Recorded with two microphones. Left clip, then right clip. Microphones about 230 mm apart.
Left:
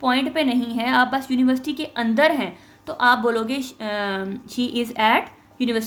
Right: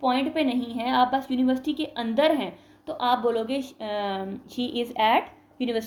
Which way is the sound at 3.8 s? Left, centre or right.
Left.